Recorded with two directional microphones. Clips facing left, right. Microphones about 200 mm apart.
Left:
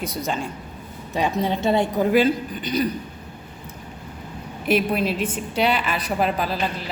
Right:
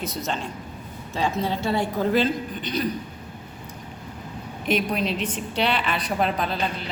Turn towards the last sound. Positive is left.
turn(degrees=5)  # may be behind; listen again after turning